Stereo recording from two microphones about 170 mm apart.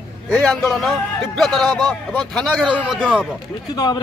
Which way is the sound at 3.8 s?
25° left (ahead or behind).